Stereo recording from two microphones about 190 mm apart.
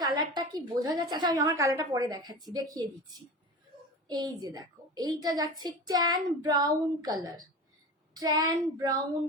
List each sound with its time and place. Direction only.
0.0 s a sound: 20° right (ahead or behind)
0.8 s a woman's voice: 20° right (ahead or behind)
4.1 s a woman's voice: 20° right (ahead or behind)